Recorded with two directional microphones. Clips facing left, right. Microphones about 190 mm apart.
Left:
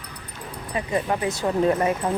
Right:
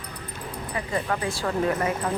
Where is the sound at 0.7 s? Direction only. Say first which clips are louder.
Left 4 dB; 20° left (ahead or behind).